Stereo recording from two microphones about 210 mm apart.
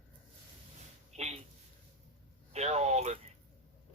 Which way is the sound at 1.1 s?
30° right (ahead or behind).